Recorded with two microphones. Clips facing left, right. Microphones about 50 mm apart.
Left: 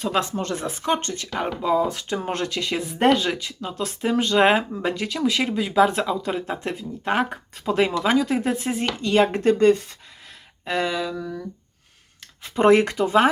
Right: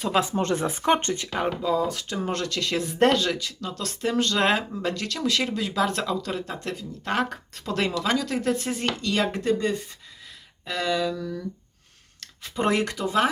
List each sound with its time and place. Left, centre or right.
0.0 s speech: centre
0.3 s speech: right
1.3 s speech: centre
1.6 s speech: left
2.5 s speech: centre
8.8 s speech: left
10.8 s speech: centre
12.4 s speech: left